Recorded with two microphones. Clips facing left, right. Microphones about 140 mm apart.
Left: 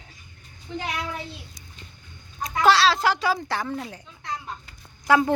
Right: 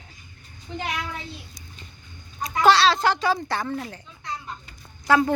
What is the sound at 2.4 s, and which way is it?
Speech, centre (ahead or behind).